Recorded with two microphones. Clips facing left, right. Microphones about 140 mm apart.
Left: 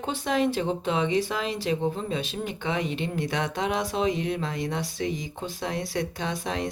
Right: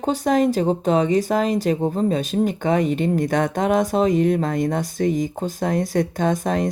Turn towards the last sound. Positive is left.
turn(degrees=-45)  # may be behind; listen again after turning